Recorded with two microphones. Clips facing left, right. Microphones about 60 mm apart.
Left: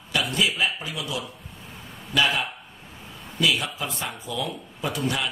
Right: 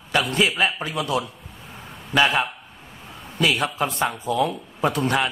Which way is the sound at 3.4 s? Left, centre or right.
Right.